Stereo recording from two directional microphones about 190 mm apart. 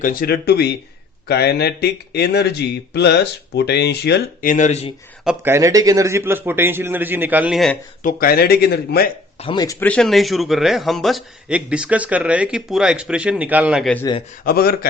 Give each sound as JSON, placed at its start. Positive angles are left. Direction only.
{"t": 0.0, "sound": "speech", "side_deg": 50}
{"t": 5.2, "sound": "a man's voice", "side_deg": -5}
{"t": 5.5, "sound": "a man's voice", "side_deg": -15}
{"t": 8.0, "sound": "speech", "side_deg": 50}
{"t": 9.4, "sound": "speech", "side_deg": 25}
{"t": 9.8, "sound": "a man's voice", "side_deg": 5}
{"t": 14.4, "sound": "speech", "side_deg": 50}